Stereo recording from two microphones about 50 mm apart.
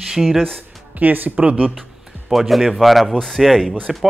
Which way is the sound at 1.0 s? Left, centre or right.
Right.